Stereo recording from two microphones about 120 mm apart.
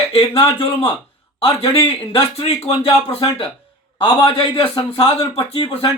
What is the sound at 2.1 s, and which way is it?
Speech, 50° left (ahead or behind).